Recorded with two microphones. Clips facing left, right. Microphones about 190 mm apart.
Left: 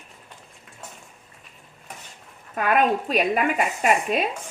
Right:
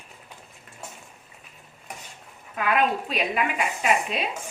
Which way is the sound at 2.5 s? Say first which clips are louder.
Left 3 dB; 45° left (ahead or behind).